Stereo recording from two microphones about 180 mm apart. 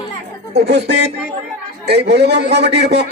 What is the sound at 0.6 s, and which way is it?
A man's voice, 70° right (ahead or behind).